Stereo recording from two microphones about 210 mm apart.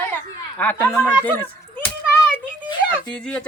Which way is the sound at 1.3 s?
10° left (ahead or behind).